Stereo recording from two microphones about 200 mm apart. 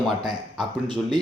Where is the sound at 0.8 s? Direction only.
25° right (ahead or behind).